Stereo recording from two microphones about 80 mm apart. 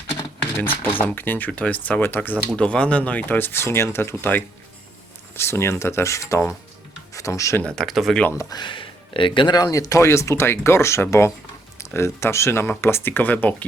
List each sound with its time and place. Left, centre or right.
0.2 s a sound: left
0.9 s speech: left
2.6 s speech: centre; by 6.4 s left
7.1 s music: left
7.6 s speech: centre
8.4 s speech: left
9.6 s speech: left; by 13.7 s centre